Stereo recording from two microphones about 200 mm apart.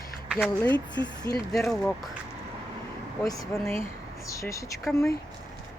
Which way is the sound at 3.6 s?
30° right (ahead or behind).